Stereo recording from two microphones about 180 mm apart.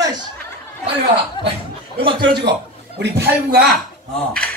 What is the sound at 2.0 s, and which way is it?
Speech, 30° right (ahead or behind).